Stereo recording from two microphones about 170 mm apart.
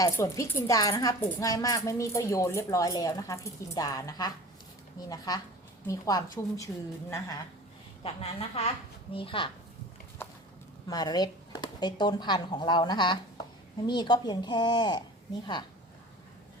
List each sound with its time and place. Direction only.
0.0 s a woman's voice: 15° left (ahead or behind)
8.0 s a woman's voice: 35° left (ahead or behind)
10.8 s a woman's voice: 25° left (ahead or behind)